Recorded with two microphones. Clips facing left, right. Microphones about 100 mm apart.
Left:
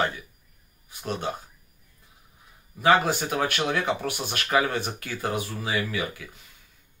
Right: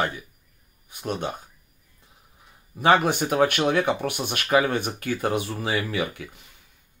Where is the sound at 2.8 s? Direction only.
20° right (ahead or behind).